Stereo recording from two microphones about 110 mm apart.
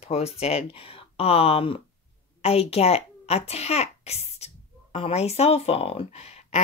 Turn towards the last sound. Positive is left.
turn(degrees=75)  # may be behind; listen again after turning